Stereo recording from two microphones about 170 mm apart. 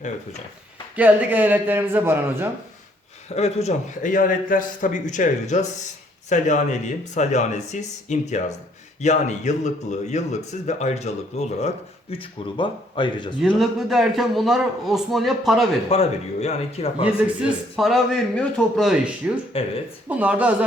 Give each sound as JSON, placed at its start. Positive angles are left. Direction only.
{"t": 0.9, "sound": "a man's voice", "side_deg": -10}
{"t": 3.2, "sound": "a man's voice", "side_deg": 40}
{"t": 12.1, "sound": "speech", "side_deg": 30}
{"t": 13.6, "sound": "a man's voice", "side_deg": 0}
{"t": 15.9, "sound": "speech", "side_deg": 35}
{"t": 17.4, "sound": "a man's voice", "side_deg": 0}
{"t": 19.5, "sound": "speech", "side_deg": 35}
{"t": 20.1, "sound": "a man's voice", "side_deg": -10}